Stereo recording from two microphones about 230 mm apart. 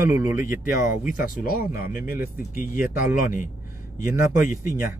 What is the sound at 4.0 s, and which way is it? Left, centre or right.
Speech, centre.